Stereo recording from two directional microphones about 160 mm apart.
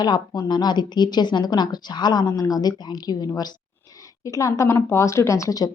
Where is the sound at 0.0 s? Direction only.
25° left (ahead or behind).